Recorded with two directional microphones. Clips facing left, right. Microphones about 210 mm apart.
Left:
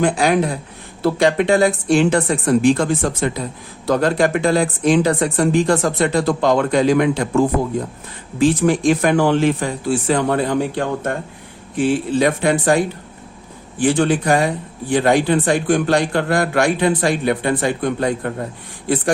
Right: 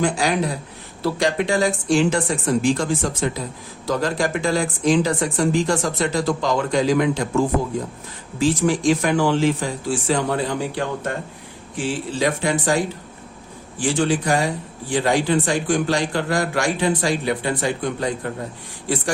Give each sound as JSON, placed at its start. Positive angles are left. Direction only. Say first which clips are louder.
{"t": 0.0, "sound": "speech", "louder": "left 4 dB", "side_deg": 55}
{"t": 8.6, "sound": "speech", "louder": "left 3 dB", "side_deg": 55}